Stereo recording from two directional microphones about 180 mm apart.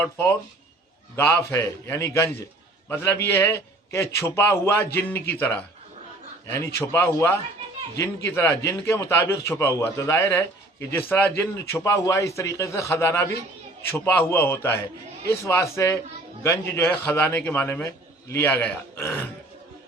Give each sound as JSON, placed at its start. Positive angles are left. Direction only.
{"t": 0.0, "sound": "a man's voice", "side_deg": 10}
{"t": 6.7, "sound": "a man's voice", "side_deg": 15}